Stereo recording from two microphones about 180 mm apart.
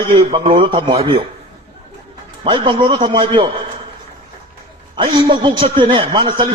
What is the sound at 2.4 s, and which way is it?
A man's voice, 25° right (ahead or behind).